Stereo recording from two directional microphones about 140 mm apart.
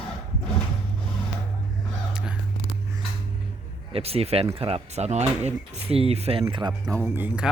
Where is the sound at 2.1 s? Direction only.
5° right (ahead or behind).